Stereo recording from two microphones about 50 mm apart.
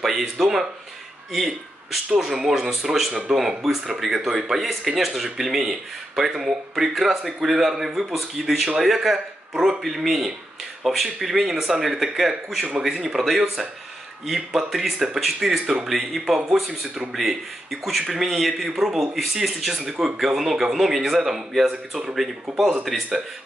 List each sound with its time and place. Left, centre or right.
0.4 s speech: centre
3.1 s speech: centre
3.3 s speech: centre